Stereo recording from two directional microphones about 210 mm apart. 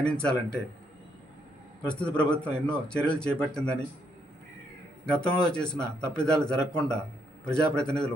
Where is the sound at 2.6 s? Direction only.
5° left (ahead or behind).